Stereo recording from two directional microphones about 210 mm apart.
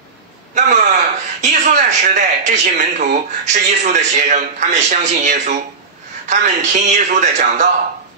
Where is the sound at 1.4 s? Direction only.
35° right (ahead or behind).